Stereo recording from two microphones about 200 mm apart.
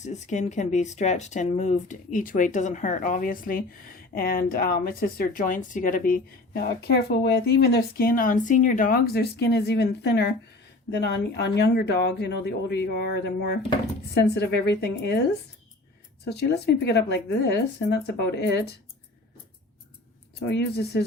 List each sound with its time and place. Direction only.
0.0 s speech: 35° left (ahead or behind); by 15.2 s 55° left (ahead or behind)
16.2 s speech: 55° left (ahead or behind)
20.5 s speech: 55° left (ahead or behind)